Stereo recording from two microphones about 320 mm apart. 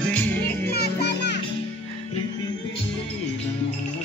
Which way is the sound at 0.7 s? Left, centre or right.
Left.